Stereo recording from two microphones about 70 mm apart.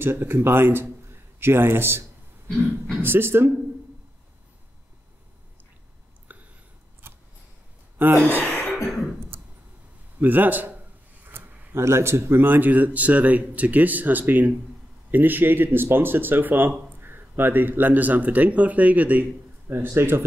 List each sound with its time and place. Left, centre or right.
0.0 s a man's voice: right
6.3 s a sound: right
8.3 s gasp: left
10.2 s speech: right
19.7 s speech: right